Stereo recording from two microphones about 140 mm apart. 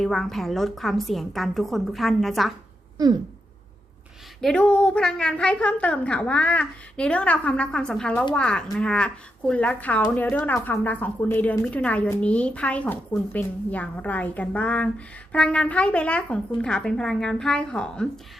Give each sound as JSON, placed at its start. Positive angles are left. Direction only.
{"t": 0.0, "sound": "a woman's voice", "side_deg": 0}
{"t": 3.0, "sound": "a sound", "side_deg": -25}
{"t": 4.4, "sound": "a woman's voice", "side_deg": 5}